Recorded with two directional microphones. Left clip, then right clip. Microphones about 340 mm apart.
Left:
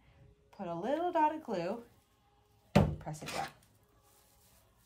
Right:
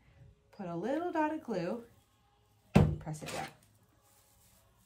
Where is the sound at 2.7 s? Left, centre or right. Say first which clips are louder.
Even; centre.